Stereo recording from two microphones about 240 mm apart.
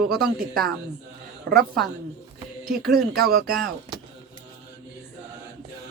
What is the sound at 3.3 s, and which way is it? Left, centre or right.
Speech, right.